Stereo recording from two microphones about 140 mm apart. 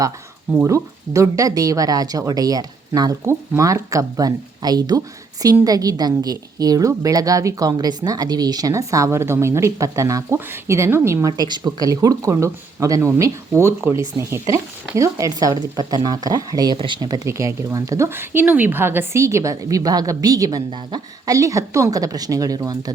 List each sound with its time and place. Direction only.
0.5 s a woman's voice: 20° right (ahead or behind)